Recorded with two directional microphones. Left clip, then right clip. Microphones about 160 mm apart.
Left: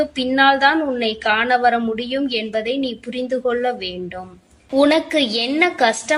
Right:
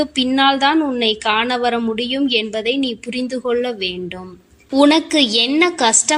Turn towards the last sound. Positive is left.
turn(degrees=-45)  # may be behind; listen again after turning